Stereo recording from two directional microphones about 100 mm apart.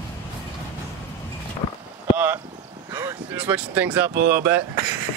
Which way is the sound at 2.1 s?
20° right (ahead or behind).